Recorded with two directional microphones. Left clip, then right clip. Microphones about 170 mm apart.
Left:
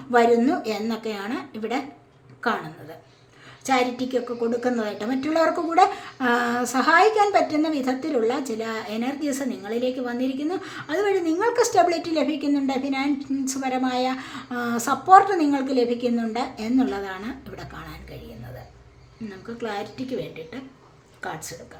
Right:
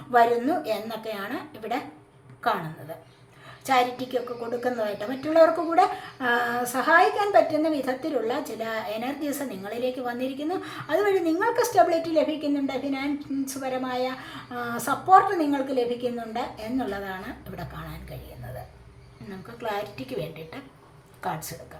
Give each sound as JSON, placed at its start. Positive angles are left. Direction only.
{"t": 0.1, "sound": "a woman's voice", "side_deg": 25}
{"t": 3.6, "sound": "a woman's voice", "side_deg": 20}